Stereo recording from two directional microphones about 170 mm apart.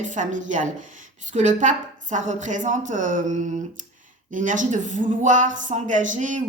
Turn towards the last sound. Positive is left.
turn(degrees=-45)  # may be behind; listen again after turning